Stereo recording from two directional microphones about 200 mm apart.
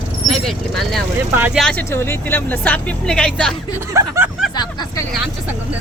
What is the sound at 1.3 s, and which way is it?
Speech, 10° right (ahead or behind).